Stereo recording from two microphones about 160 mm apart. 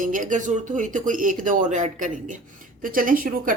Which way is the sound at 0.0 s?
55° right (ahead or behind).